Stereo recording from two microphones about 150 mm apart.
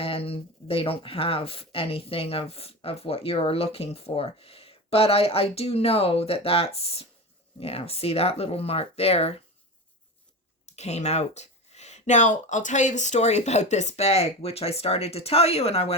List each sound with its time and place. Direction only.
0.0 s speech: 40° left (ahead or behind)
10.7 s speech: 45° left (ahead or behind)